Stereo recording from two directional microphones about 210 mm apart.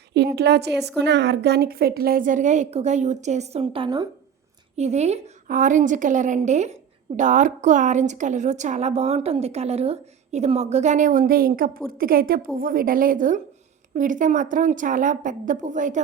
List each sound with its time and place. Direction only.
0.1 s a woman's voice: 50° right (ahead or behind)